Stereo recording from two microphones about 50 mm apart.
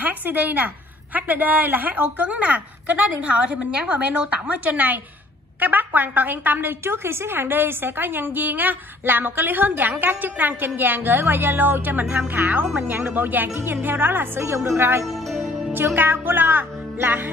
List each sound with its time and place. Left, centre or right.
0.0 s a woman's voice: right
6.8 s a woman's voice: right
14.4 s a woman's voice: right
14.8 s speech: right